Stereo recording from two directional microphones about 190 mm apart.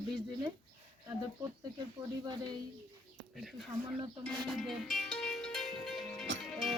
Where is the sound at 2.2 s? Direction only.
20° right (ahead or behind).